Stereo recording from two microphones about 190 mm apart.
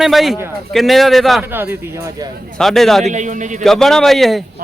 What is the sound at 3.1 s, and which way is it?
Speech, 40° right (ahead or behind).